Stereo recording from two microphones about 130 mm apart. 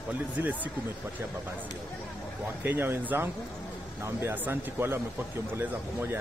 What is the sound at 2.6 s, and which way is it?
Speech, 15° right (ahead or behind).